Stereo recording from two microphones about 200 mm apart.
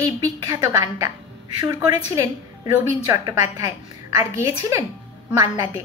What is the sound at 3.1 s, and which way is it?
Speech, 15° right (ahead or behind).